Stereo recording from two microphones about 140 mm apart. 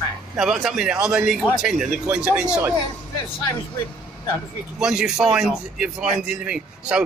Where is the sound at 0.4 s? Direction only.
5° right (ahead or behind).